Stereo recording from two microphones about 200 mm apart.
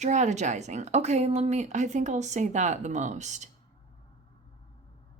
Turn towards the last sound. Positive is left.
turn(degrees=-35)  # may be behind; listen again after turning